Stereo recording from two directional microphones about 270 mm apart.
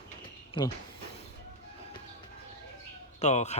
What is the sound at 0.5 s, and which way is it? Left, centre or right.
Speech, centre.